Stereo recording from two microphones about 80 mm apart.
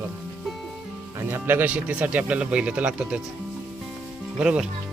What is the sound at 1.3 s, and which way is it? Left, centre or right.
Speech, right.